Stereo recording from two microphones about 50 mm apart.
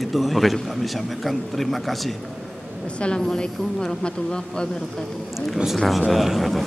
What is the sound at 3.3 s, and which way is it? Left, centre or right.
A man's voice, centre.